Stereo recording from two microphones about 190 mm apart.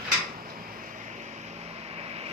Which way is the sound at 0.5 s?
45° right (ahead or behind).